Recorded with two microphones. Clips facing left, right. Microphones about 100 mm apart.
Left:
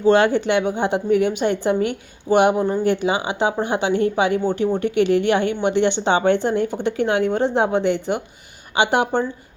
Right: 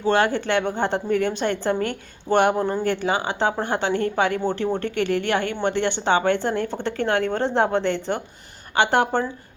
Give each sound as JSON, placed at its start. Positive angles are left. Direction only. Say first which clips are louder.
{"t": 0.0, "sound": "a woman's voice", "louder": "left 5 dB", "side_deg": 20}